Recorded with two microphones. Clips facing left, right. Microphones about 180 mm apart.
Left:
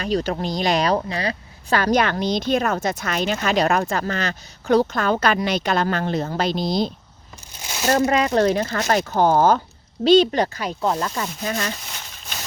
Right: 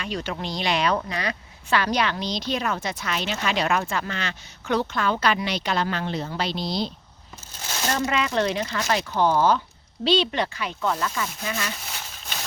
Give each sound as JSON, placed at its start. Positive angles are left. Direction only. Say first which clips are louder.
{"t": 0.0, "sound": "speech", "louder": "left 7 dB", "side_deg": 40}